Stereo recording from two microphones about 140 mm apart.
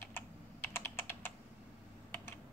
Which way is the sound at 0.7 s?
15° left (ahead or behind).